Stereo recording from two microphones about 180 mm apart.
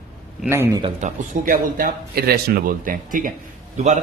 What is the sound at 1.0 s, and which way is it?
A man's voice, 50° right (ahead or behind).